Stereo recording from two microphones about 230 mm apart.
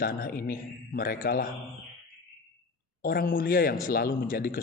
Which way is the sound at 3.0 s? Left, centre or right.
Left.